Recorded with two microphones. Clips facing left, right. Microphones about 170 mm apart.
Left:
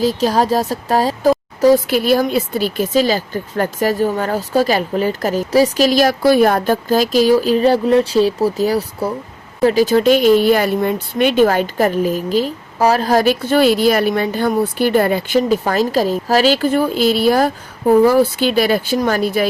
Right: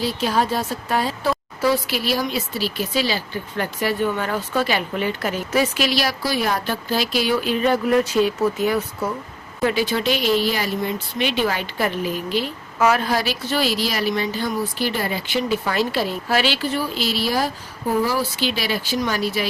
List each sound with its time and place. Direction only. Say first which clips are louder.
0.0 s speech: left 6 dB; 40° left (ahead or behind)